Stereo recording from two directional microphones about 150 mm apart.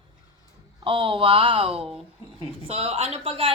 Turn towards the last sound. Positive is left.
turn(degrees=-40)  # may be behind; listen again after turning